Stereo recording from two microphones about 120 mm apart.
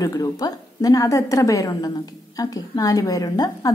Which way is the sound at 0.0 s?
30° left (ahead or behind).